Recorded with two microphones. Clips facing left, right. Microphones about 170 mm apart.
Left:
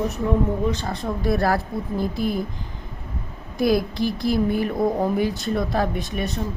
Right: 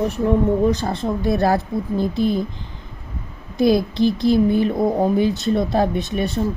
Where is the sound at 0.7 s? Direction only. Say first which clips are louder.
Right 5 dB; 30° right (ahead or behind).